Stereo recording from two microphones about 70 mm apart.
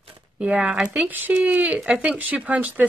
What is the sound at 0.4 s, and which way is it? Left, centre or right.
Speech, centre.